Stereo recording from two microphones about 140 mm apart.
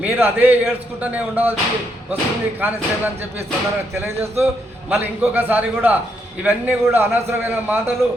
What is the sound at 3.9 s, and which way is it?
A man's voice, 15° right (ahead or behind).